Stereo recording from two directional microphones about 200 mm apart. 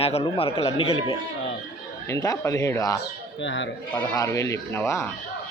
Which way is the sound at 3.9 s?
15° left (ahead or behind).